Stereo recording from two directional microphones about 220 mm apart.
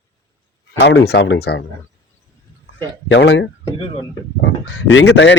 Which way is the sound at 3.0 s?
55° left (ahead or behind).